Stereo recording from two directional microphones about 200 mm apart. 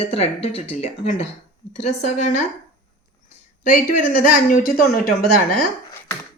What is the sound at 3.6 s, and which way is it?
Speech, 40° left (ahead or behind).